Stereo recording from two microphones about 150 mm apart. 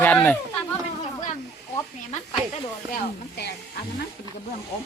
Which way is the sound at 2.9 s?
90° left.